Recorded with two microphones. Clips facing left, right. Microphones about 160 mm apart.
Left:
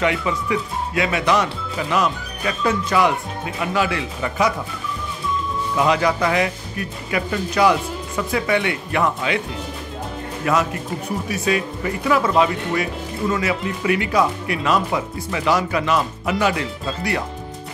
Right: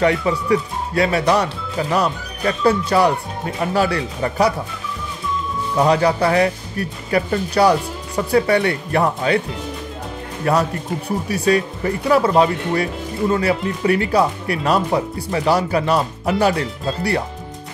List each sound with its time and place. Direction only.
0.0 s speech: 35° right (ahead or behind)
5.8 s speech: 35° right (ahead or behind)
10.4 s speech: 35° right (ahead or behind)
13.3 s speech: 35° right (ahead or behind)